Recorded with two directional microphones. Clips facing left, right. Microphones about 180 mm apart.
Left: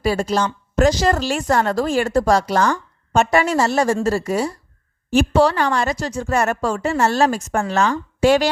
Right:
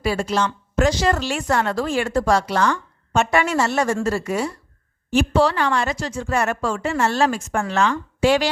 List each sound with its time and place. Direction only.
0.0 s a woman's voice: 40° left (ahead or behind)